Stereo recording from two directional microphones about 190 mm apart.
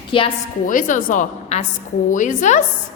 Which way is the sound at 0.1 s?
30° left (ahead or behind).